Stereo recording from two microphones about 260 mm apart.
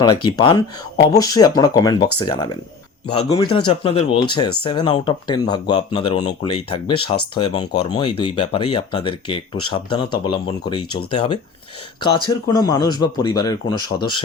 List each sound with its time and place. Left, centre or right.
0.3 s speech: centre